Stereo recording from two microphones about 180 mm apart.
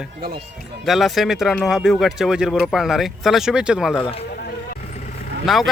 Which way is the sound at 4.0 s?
35° left (ahead or behind).